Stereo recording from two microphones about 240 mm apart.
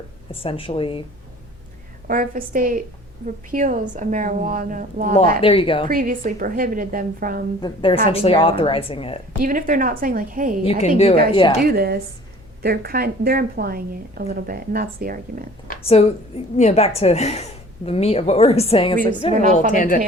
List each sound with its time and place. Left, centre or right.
0.3 s a woman's voice: left
2.0 s a woman's voice: right
5.4 s a woman's voice: left
5.9 s a woman's voice: right
7.6 s a woman's voice: left
9.4 s a woman's voice: right
10.6 s a woman's voice: left
11.6 s a woman's voice: right
15.6 s a woman's voice: left
19.7 s a woman's voice: left